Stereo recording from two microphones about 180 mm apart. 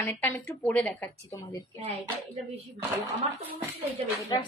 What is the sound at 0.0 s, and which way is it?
A woman's voice, 10° left (ahead or behind).